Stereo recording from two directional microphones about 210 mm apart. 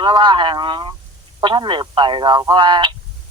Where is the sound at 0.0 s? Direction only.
20° right (ahead or behind).